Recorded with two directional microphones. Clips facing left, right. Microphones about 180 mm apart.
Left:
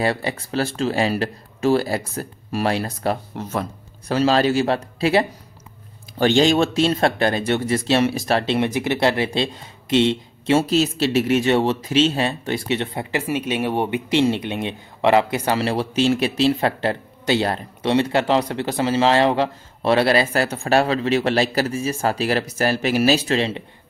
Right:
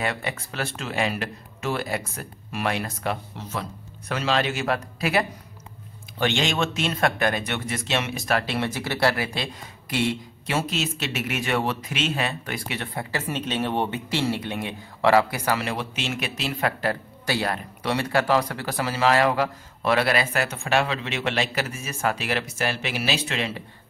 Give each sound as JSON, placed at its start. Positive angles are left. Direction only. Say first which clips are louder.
{"t": 0.0, "sound": "speech", "louder": "left 6 dB", "side_deg": 35}
{"t": 13.3, "sound": "speech", "louder": "left 4 dB", "side_deg": 10}